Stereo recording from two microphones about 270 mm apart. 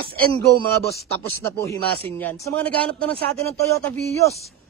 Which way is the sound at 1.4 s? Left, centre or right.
Centre.